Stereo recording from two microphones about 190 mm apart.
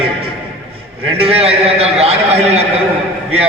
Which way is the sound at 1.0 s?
30° right (ahead or behind).